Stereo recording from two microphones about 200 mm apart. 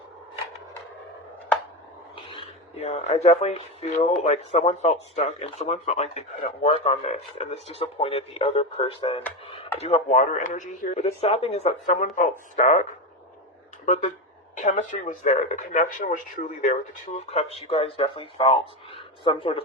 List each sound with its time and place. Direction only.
2.3 s speech: 30° left (ahead or behind)
10.9 s speech: 30° left (ahead or behind)